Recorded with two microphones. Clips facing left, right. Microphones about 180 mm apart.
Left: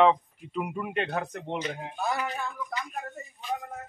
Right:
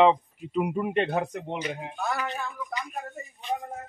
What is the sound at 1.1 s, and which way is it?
Speech, 15° right (ahead or behind).